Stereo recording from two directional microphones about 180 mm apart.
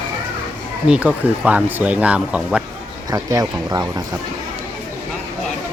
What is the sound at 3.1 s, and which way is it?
Speech, 20° right (ahead or behind).